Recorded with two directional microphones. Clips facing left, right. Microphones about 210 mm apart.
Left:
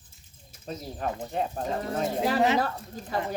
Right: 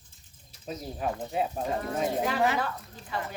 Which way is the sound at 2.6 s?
40° left (ahead or behind).